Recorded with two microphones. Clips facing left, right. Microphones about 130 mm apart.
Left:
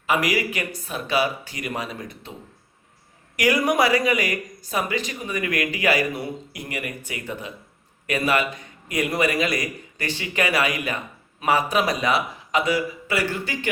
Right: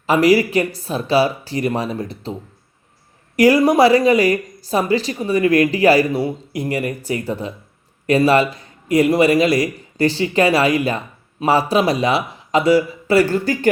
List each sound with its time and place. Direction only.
0.1 s a man's voice: 35° right (ahead or behind)
3.3 s a man's voice: 35° right (ahead or behind)